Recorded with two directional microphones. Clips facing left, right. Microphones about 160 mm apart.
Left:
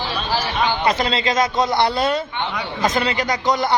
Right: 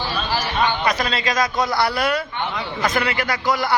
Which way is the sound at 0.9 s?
25° left (ahead or behind).